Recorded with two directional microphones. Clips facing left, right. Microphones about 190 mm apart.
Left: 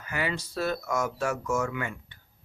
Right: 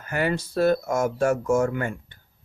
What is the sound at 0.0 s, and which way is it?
Speech, 50° right (ahead or behind).